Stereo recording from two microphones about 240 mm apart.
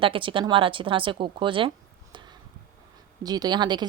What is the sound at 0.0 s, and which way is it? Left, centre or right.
A woman's voice, right.